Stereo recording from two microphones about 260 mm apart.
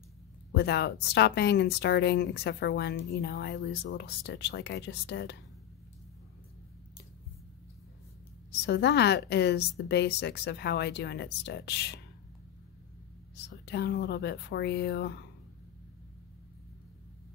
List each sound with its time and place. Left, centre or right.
0.5 s speech: left
8.5 s speech: left
13.5 s speech: left